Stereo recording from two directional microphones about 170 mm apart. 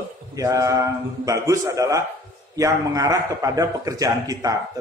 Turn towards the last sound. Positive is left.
turn(degrees=-20)  # may be behind; listen again after turning